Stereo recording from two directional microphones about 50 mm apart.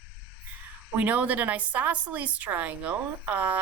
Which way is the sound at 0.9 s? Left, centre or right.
Right.